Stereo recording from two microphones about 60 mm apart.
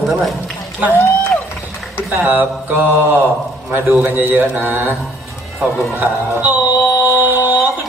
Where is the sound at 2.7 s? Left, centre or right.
Right.